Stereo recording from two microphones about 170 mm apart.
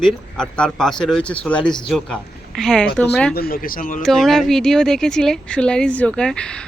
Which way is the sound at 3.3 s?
60° left (ahead or behind).